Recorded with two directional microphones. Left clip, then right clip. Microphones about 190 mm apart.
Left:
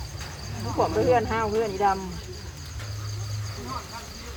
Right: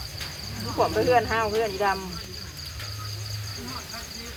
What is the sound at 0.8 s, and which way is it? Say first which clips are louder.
Cricket: right 1 dB; 20° left (ahead or behind).